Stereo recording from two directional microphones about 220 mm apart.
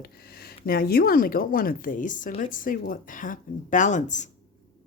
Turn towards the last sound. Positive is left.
turn(degrees=35)  # may be behind; listen again after turning